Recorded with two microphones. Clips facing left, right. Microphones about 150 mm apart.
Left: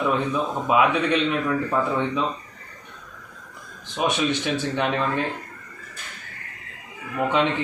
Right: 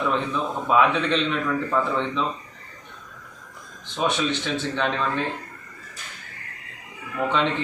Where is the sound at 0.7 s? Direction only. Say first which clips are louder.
Even; 10° left (ahead or behind).